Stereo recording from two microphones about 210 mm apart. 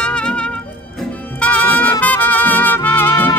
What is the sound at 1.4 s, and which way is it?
Trumpet, 5° left (ahead or behind).